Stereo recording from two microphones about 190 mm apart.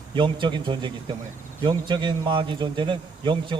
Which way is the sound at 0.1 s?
25° right (ahead or behind).